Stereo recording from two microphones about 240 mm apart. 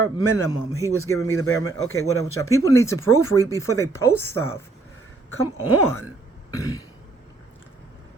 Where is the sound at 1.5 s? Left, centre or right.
Centre.